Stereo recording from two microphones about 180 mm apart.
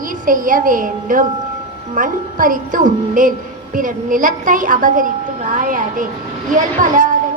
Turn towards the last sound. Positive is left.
turn(degrees=-45)  # may be behind; listen again after turning